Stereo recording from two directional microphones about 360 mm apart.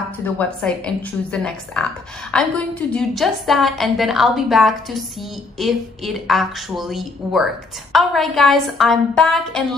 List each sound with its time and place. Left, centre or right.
0.2 s a woman's voice: centre